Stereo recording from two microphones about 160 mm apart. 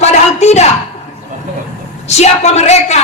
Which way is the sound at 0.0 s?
45° left (ahead or behind).